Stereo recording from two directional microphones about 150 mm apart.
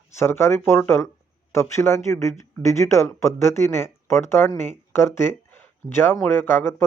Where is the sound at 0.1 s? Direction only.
15° left (ahead or behind).